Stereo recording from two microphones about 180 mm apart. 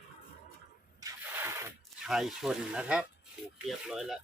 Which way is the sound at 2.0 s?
Centre (ahead or behind).